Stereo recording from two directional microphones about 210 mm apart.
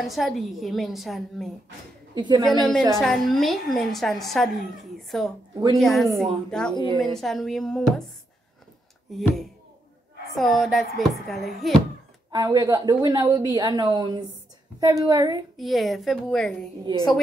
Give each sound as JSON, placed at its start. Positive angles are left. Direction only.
{"t": 0.0, "sound": "speech", "side_deg": 0}
{"t": 2.1, "sound": "a woman's voice", "side_deg": -20}
{"t": 2.4, "sound": "speech", "side_deg": 0}
{"t": 9.1, "sound": "speech", "side_deg": 0}
{"t": 12.3, "sound": "a woman's voice", "side_deg": -20}
{"t": 15.5, "sound": "speech", "side_deg": 0}